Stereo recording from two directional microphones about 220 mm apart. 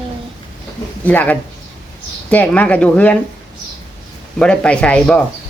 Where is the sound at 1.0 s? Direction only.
5° left (ahead or behind).